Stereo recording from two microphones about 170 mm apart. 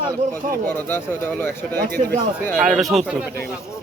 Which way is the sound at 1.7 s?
60° right (ahead or behind).